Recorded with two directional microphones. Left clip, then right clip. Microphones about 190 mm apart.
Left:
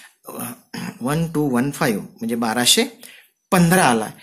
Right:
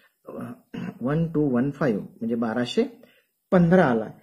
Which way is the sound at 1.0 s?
5° left (ahead or behind).